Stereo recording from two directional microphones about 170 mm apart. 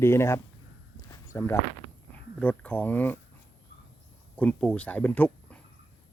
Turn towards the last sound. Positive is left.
turn(degrees=10)  # may be behind; listen again after turning